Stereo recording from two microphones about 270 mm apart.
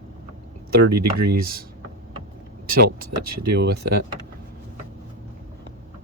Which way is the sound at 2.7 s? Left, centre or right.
Right.